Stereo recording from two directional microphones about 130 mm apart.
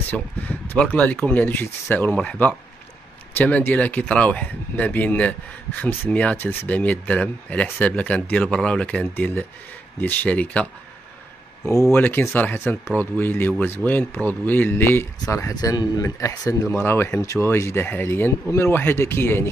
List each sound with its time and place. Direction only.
0.1 s speech: 15° left (ahead or behind)
11.6 s speech: 25° left (ahead or behind)
15.5 s speech: 30° left (ahead or behind)